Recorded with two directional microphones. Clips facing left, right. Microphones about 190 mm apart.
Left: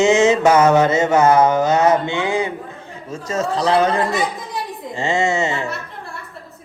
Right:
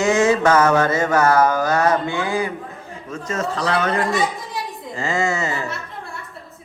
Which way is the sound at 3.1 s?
30° left (ahead or behind).